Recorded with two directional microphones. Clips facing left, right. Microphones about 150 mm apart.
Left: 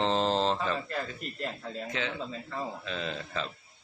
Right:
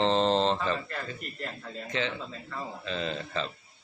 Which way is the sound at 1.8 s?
Centre (ahead or behind).